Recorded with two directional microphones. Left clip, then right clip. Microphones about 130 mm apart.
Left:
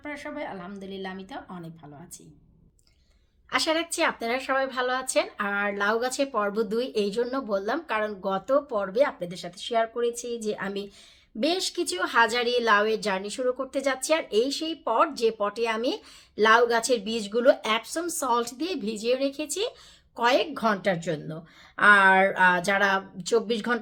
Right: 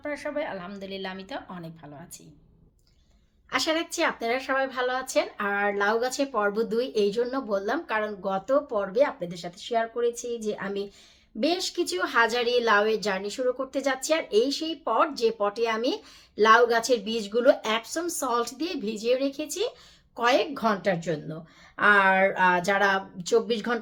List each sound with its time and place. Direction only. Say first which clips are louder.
0.0 s a woman's voice: right 4 dB; centre (ahead or behind)
3.5 s a woman's voice: left 1 dB; 20° left (ahead or behind)